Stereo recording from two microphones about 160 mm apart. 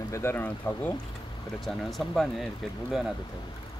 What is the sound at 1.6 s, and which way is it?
Speech, centre (ahead or behind).